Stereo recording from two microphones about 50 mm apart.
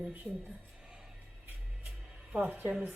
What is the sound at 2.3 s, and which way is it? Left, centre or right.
Speech, centre.